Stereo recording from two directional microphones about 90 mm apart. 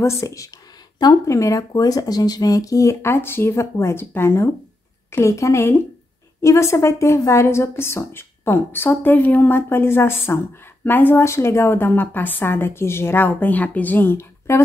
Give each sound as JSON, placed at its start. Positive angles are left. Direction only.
{"t": 0.0, "sound": "a woman's voice", "side_deg": 30}